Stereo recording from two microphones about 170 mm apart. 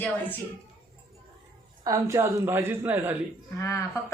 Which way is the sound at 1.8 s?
20° right (ahead or behind).